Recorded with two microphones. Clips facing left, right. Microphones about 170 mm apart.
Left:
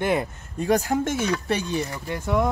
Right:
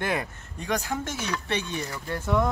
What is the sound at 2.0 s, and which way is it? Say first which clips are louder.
Speech: right 1 dB; 10° left (ahead or behind).